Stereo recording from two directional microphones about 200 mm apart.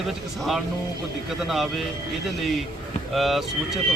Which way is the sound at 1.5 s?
Centre (ahead or behind).